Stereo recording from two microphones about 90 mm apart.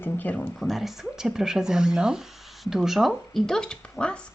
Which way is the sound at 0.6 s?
Centre (ahead or behind).